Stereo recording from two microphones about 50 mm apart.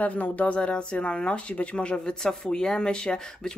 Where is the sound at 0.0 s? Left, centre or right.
Left.